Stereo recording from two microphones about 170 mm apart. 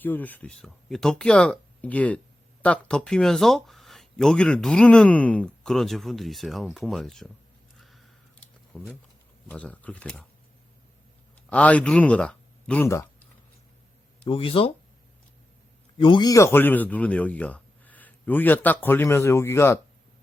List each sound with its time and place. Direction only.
0.0 s speech: 10° left (ahead or behind)
7.8 s a sound: centre (ahead or behind)
8.7 s a man's voice: 10° left (ahead or behind)
11.4 s speech: 5° left (ahead or behind)
14.3 s speech: 35° left (ahead or behind)
16.0 s a man's voice: 25° left (ahead or behind)